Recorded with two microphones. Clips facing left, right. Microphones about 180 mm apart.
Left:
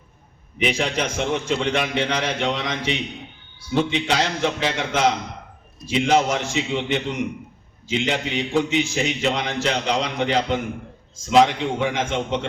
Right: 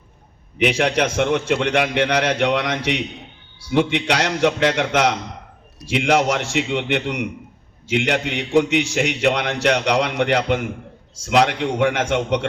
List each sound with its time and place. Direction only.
0.6 s a man's voice: 65° right (ahead or behind)